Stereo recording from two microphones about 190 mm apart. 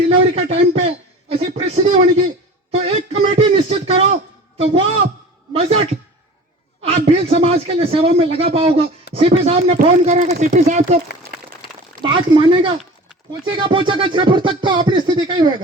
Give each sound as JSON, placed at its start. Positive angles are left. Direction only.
{"t": 0.1, "sound": "a man's voice", "side_deg": -30}
{"t": 12.0, "sound": "music", "side_deg": -25}